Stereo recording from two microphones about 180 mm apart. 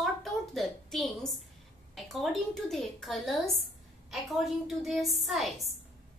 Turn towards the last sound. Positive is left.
turn(degrees=0)  # may be behind; listen again after turning